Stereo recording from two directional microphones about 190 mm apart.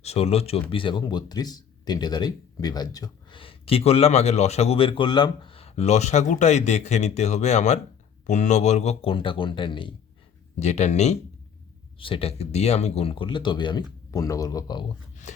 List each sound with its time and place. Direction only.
0.0 s speech: 35° left (ahead or behind)